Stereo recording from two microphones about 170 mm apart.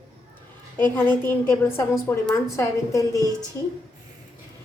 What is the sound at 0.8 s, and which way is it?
A woman's voice, 10° left (ahead or behind).